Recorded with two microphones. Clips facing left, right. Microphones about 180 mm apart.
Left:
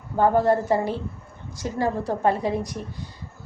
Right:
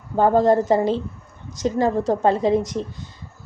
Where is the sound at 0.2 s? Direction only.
20° right (ahead or behind).